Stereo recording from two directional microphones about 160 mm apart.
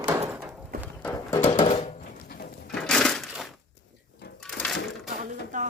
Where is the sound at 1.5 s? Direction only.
35° left (ahead or behind).